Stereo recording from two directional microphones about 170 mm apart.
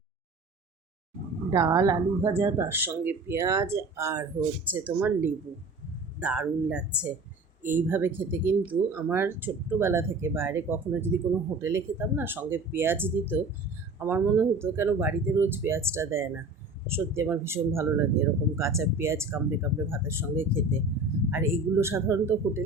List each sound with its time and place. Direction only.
1.5 s speech: 20° right (ahead or behind)
7.6 s speech: 50° right (ahead or behind)
7.9 s speech: 10° right (ahead or behind)